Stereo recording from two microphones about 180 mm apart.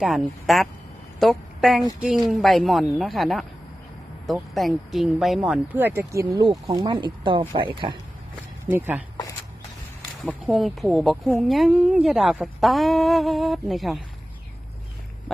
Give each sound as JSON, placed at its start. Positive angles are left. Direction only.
{"t": 0.0, "sound": "a woman's voice", "side_deg": 0}
{"t": 8.6, "sound": "speech", "side_deg": -10}
{"t": 10.2, "sound": "a woman's voice", "side_deg": 0}